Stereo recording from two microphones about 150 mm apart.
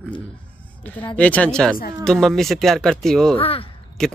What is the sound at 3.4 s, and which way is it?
Speech, 40° left (ahead or behind).